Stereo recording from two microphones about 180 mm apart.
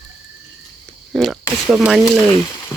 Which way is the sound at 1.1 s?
Centre (ahead or behind).